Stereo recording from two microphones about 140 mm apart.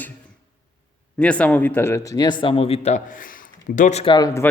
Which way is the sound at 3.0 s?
75° left (ahead or behind).